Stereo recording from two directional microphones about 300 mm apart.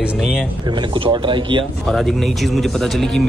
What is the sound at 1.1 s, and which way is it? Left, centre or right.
Speech, centre.